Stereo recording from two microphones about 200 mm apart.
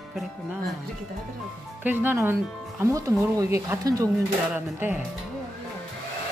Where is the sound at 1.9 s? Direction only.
10° right (ahead or behind).